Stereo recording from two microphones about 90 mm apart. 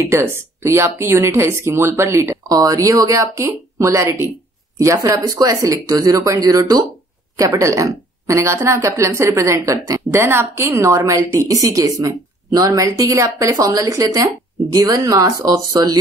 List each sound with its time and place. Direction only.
0.0 s speech: 30° right (ahead or behind)
2.4 s a woman's voice: 40° right (ahead or behind)
10.2 s a woman's voice: 25° right (ahead or behind); by 16.0 s 45° right (ahead or behind)